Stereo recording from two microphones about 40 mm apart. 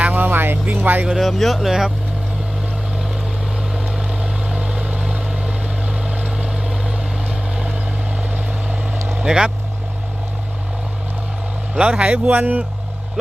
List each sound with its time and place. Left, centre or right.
0.0 s vehicle: right
0.7 s speech: right
1.3 s speech: centre
3.8 s vehicle: centre
6.3 s vehicle: right
7.3 s vehicle: right
9.2 s speech: centre
11.7 s speech: right